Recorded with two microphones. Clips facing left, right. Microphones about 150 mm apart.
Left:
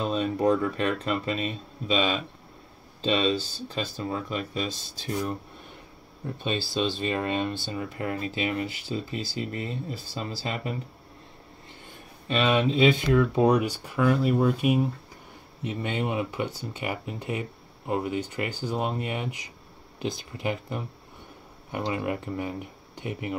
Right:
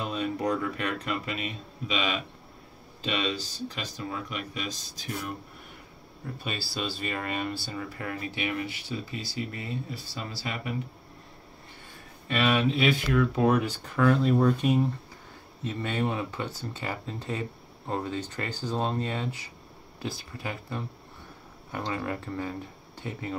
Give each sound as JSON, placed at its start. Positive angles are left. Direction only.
{"t": 0.0, "sound": "speech", "side_deg": 25}
{"t": 6.4, "sound": "speech", "side_deg": 25}
{"t": 12.3, "sound": "speech", "side_deg": 20}